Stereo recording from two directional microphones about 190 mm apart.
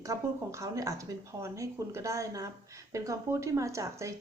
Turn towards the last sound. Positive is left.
turn(degrees=-15)  # may be behind; listen again after turning